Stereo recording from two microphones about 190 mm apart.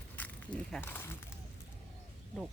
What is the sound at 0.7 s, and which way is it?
Speech, 10° left (ahead or behind).